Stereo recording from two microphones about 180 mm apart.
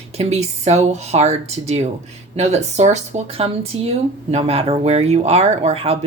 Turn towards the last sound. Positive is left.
turn(degrees=-35)  # may be behind; listen again after turning